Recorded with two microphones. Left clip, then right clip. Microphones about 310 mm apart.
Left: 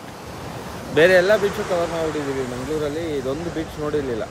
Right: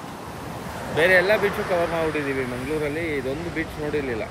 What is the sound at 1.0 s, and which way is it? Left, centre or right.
Speech, centre.